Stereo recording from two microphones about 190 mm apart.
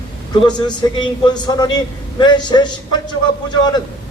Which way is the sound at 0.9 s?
20° left (ahead or behind).